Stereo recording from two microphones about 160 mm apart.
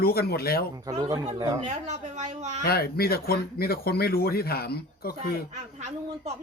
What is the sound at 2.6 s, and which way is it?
Speech, 75° left (ahead or behind).